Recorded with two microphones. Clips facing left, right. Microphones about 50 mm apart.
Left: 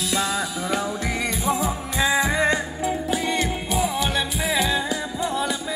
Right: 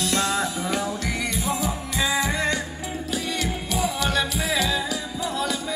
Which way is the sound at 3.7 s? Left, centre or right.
Centre.